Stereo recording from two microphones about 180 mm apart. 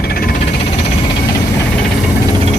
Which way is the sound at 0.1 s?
55° left (ahead or behind).